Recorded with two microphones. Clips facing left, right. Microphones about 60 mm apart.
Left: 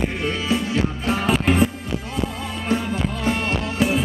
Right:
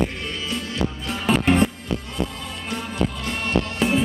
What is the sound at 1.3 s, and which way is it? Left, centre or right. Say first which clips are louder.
Music: right 1 dB; centre.